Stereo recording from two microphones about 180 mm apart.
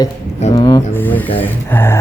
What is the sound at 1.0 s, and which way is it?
Speech, 10° left (ahead or behind).